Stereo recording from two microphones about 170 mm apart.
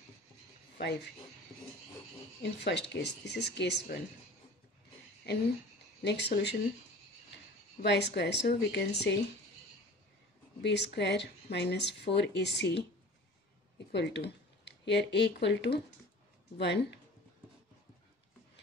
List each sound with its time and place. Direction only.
2.4 s speech: 90° left
6.0 s a woman's voice: 80° left
7.8 s a woman's voice: 85° left
10.6 s speech: 90° left
13.9 s speech: 80° left
16.5 s speech: 75° left (ahead or behind)